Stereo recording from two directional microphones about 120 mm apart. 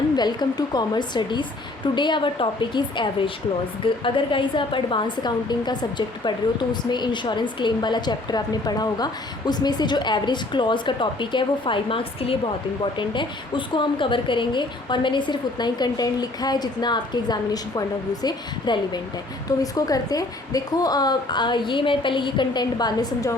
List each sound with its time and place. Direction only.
0.2 s a woman's voice: 35° left (ahead or behind)